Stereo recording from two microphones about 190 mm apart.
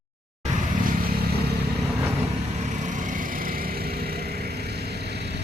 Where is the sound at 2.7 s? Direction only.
40° right (ahead or behind); by 5.4 s 60° right (ahead or behind).